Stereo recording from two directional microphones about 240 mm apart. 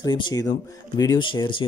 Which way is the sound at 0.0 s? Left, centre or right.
Centre.